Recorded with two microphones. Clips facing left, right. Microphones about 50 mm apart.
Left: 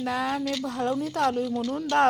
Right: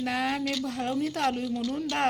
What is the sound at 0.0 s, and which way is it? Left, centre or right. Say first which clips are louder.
Speech: left 1 dB; right.